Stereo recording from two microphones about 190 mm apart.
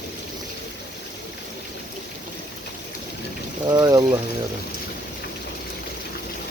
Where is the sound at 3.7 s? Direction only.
20° right (ahead or behind).